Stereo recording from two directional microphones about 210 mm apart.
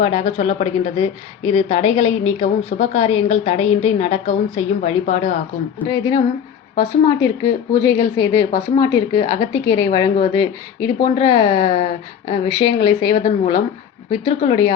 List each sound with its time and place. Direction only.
0.0 s a woman's voice: 30° left (ahead or behind)
5.8 s a woman's voice: 20° left (ahead or behind)
11.6 s speech: 35° left (ahead or behind)
12.3 s a woman's voice: 20° left (ahead or behind)
13.1 s speech: 35° left (ahead or behind)
14.1 s a woman's voice: 25° left (ahead or behind)